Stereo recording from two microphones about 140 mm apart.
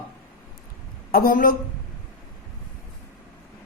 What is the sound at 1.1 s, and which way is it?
Speech, 90° left.